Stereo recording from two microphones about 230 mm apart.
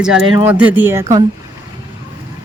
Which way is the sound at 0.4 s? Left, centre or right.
Centre.